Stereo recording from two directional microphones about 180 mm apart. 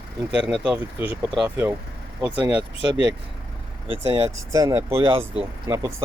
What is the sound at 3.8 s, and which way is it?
Speech, 30° right (ahead or behind).